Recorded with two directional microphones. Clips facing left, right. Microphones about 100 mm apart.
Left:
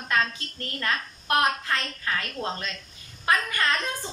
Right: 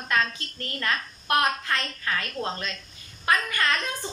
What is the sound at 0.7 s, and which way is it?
A woman's voice, 20° left (ahead or behind).